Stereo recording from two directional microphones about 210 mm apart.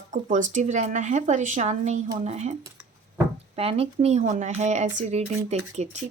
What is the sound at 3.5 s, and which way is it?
Speech, 30° right (ahead or behind).